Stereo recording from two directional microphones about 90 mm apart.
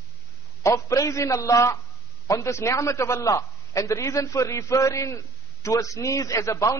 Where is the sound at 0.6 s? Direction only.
35° left (ahead or behind).